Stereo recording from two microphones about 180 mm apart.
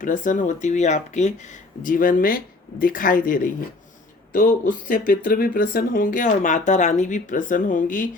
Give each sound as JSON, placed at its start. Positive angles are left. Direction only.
{"t": 0.0, "sound": "speech", "side_deg": 45}